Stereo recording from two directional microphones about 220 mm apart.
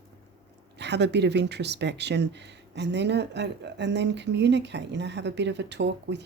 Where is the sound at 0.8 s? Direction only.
50° right (ahead or behind).